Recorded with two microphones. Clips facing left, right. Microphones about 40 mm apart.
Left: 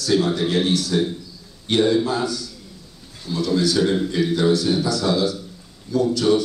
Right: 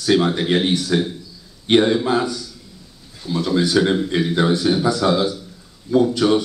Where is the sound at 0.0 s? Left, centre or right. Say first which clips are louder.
Right 2 dB; right.